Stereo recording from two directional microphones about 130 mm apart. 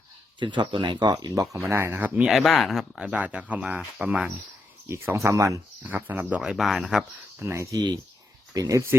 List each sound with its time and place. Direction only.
0.3 s speech: 35° right (ahead or behind)
1.6 s speech: 15° right (ahead or behind)
2.2 s speech: centre (ahead or behind)
4.9 s speech: 20° right (ahead or behind); by 7.0 s 5° right (ahead or behind)
7.3 s speech: 20° right (ahead or behind)